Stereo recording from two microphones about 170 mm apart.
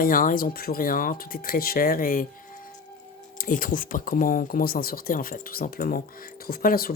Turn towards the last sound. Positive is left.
turn(degrees=55)  # may be behind; listen again after turning